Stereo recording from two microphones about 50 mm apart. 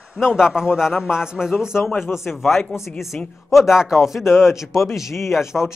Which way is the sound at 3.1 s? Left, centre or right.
Left.